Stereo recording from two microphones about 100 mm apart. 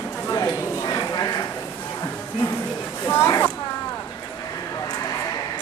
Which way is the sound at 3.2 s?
30° left (ahead or behind).